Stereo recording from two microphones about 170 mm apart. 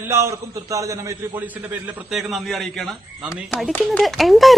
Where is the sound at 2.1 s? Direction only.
Centre (ahead or behind).